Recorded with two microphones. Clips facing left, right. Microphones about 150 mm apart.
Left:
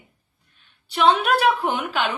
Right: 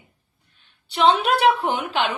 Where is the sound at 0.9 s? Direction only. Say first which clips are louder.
Even; 25° right (ahead or behind).